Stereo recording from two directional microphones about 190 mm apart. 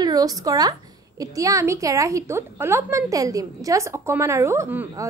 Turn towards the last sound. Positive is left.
turn(degrees=-15)  # may be behind; listen again after turning